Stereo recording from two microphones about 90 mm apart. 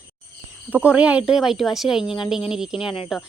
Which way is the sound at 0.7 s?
15° right (ahead or behind).